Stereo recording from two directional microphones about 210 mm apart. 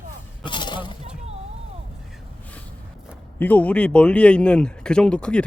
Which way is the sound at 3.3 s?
10° left (ahead or behind).